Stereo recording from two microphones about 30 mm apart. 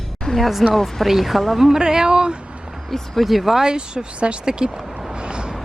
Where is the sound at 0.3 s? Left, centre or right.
Centre.